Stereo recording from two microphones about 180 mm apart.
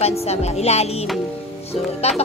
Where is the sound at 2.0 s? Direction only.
35° left (ahead or behind).